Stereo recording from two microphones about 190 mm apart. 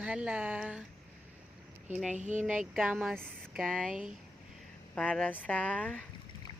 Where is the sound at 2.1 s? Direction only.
40° right (ahead or behind).